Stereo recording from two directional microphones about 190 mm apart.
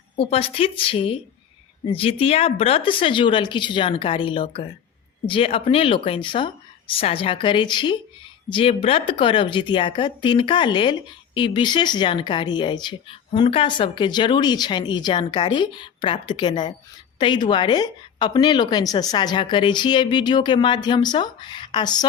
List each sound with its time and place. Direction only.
0.2 s speech: 30° left (ahead or behind)